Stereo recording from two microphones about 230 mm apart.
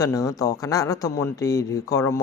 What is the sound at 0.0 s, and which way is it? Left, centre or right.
A man's voice, centre.